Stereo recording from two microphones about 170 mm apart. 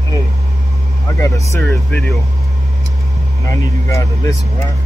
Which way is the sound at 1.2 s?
15° left (ahead or behind).